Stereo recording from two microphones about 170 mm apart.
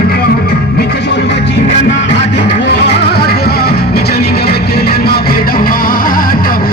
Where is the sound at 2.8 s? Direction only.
65° left (ahead or behind).